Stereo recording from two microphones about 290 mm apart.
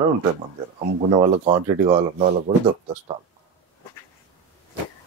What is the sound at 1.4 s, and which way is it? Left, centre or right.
Speech, right.